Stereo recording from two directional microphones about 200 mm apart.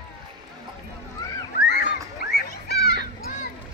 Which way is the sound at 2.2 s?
50° left (ahead or behind).